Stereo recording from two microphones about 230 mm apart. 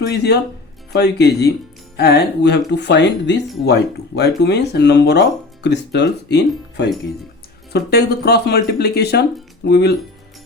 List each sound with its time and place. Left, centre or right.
0.0 s speech: left